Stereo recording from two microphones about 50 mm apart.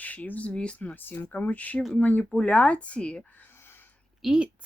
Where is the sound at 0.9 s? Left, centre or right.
Left.